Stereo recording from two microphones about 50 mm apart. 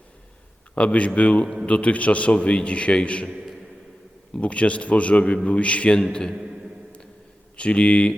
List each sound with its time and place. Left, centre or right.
0.8 s a man's voice: left
4.4 s a man's voice: left
7.5 s a man's voice: left